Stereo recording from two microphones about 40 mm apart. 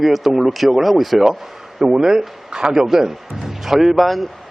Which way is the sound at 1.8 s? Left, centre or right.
Centre.